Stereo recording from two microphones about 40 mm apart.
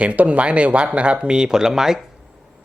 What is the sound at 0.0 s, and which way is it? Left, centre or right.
Speech, right.